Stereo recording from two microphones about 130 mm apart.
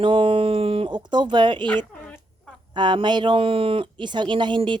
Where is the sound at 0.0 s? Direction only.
40° right (ahead or behind).